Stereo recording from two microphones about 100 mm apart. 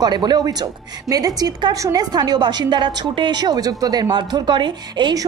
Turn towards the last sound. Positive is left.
turn(degrees=-45)  # may be behind; listen again after turning